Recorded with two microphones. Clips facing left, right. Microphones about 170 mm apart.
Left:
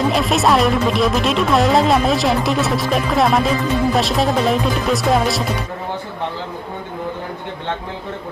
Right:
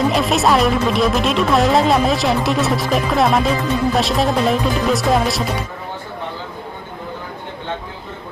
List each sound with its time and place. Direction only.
0.1 s speech: centre (ahead or behind)